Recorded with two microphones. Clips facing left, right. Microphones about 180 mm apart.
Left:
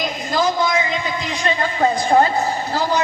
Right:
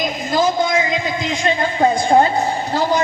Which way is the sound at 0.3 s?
30° right (ahead or behind).